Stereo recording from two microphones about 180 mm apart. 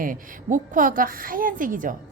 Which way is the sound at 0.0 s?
50° right (ahead or behind).